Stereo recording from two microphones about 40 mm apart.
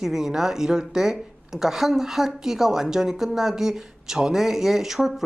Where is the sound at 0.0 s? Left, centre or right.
Centre.